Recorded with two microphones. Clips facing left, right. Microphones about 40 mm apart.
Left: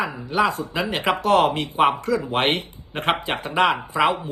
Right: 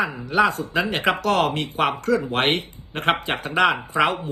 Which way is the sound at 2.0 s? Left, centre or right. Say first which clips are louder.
Right 1 dB; right.